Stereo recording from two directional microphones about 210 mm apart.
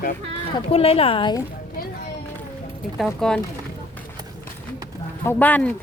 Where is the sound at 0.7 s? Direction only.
30° left (ahead or behind).